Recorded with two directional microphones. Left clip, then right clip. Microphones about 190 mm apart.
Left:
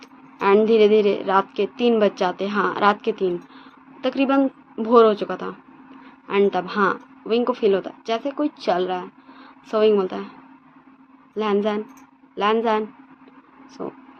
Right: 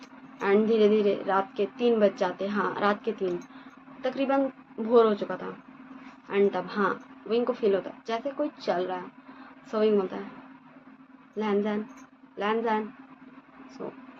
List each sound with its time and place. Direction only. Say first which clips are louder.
0.3 s a woman's voice: left 8 dB; 65° left (ahead or behind)
11.3 s a woman's voice: left 7 dB; 65° left (ahead or behind)